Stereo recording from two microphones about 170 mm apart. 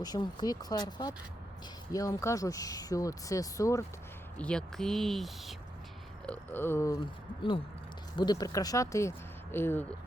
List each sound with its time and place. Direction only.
0.0 s speech: 25° left (ahead or behind)
4.4 s speech: 5° left (ahead or behind)
6.2 s a sound: 10° left (ahead or behind)
8.1 s speech: 25° left (ahead or behind)